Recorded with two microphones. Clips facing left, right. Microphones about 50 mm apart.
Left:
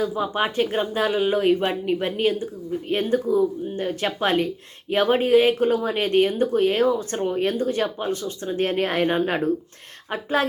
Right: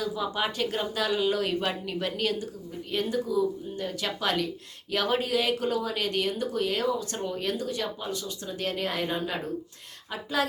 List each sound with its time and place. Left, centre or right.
0.0 s speech: left
2.9 s speech: left